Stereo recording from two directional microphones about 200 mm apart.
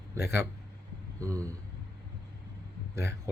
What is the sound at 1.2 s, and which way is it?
Speech, 15° right (ahead or behind).